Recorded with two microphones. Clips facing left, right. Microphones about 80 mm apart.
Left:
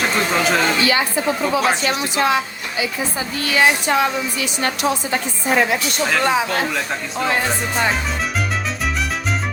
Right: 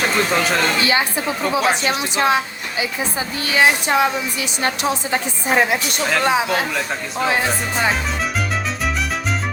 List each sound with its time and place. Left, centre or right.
0.3 s speech: centre
0.9 s a woman's voice: right; by 7.9 s centre